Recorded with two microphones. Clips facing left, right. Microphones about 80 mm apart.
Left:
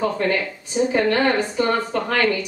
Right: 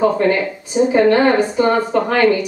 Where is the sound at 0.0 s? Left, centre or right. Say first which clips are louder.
Right 6 dB; right.